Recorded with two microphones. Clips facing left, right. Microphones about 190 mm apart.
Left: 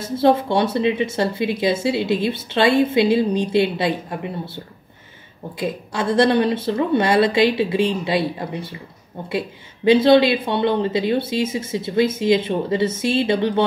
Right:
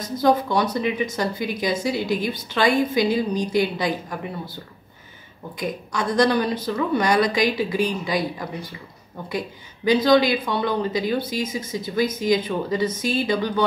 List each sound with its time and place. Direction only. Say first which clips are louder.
0.0 s speech: left 3 dB; 30° left (ahead or behind)
5.6 s speech: left 3 dB; 25° left (ahead or behind)
9.8 s speech: left 4 dB; 25° left (ahead or behind)